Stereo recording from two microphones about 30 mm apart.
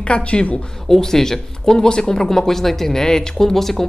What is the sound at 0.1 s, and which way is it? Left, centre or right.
Speech, left.